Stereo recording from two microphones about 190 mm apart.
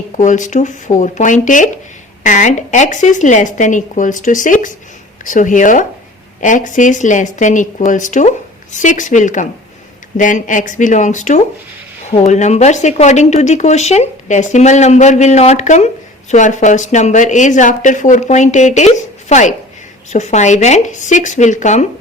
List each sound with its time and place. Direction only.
0.2 s speech: 40° left (ahead or behind)